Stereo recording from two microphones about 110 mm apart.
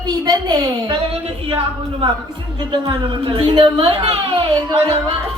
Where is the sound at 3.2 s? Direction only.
55° right (ahead or behind).